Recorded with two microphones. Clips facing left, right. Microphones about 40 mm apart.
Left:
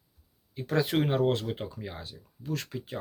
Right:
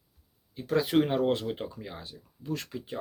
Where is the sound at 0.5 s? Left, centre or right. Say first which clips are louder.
Right 2 dB; centre.